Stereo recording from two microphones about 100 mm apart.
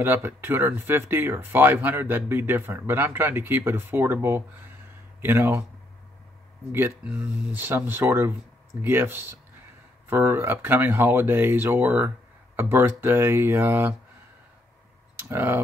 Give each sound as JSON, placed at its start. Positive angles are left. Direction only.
{"t": 0.0, "sound": "speech", "side_deg": -20}
{"t": 6.7, "sound": "speech", "side_deg": -20}
{"t": 15.1, "sound": "speech", "side_deg": -25}